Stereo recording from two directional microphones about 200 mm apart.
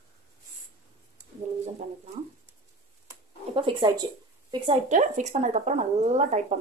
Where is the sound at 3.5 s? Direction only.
25° right (ahead or behind).